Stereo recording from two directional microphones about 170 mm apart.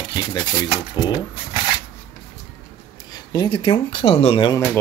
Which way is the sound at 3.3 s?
25° left (ahead or behind).